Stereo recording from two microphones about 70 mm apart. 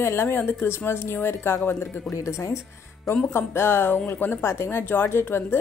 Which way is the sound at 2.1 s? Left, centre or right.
Left.